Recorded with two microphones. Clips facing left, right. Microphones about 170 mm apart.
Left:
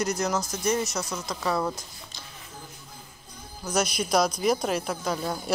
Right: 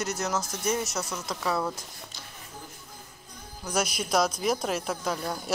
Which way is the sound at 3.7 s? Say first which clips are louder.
Left 2 dB; 5° right (ahead or behind).